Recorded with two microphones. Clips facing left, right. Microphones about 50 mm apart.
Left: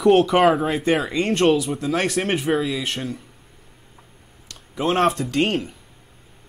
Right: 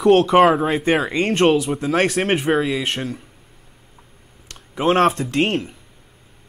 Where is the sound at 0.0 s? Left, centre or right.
Centre.